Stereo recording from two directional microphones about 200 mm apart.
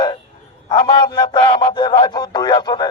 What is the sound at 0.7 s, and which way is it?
A man's voice, 25° left (ahead or behind).